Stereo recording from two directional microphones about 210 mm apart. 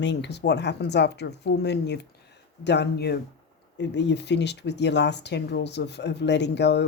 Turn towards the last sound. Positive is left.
turn(degrees=55)  # may be behind; listen again after turning